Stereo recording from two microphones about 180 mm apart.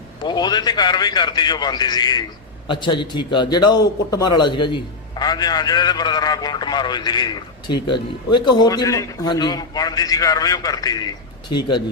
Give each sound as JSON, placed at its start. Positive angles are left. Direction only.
{"t": 0.2, "sound": "a man's voice", "side_deg": 25}